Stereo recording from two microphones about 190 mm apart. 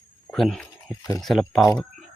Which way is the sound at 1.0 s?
15° left (ahead or behind).